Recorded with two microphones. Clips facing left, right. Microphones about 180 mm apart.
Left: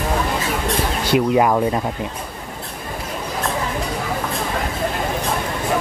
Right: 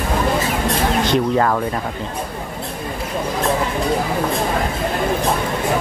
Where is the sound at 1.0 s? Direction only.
10° left (ahead or behind).